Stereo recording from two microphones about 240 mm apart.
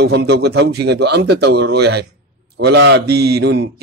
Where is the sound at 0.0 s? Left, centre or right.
Right.